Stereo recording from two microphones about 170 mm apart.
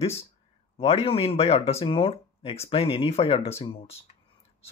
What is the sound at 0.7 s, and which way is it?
Speech, 35° left (ahead or behind).